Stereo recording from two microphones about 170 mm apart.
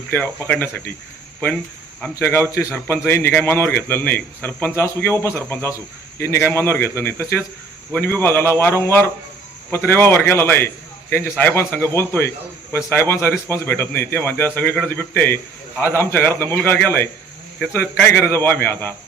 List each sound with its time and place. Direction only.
0.1 s a man's voice: 10° left (ahead or behind)
2.0 s a man's voice: 15° left (ahead or behind)